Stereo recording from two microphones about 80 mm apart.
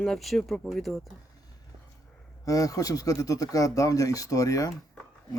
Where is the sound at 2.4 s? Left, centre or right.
Left.